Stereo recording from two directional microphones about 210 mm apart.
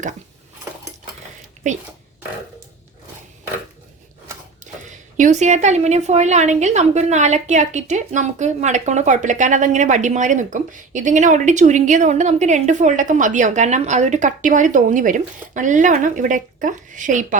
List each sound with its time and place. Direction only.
4.6 s speech: 35° right (ahead or behind)